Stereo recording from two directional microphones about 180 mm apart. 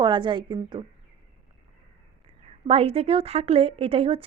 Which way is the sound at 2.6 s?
35° right (ahead or behind).